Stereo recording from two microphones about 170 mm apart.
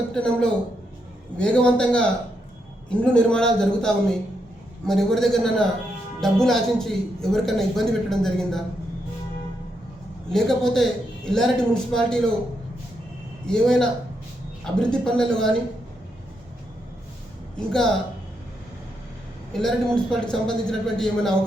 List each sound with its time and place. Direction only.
0.1 s a man's voice: 5° left (ahead or behind)
10.2 s speech: 5° left (ahead or behind)
13.5 s speech: 5° left (ahead or behind)
17.7 s speech: 5° left (ahead or behind)
19.5 s speech: 5° left (ahead or behind)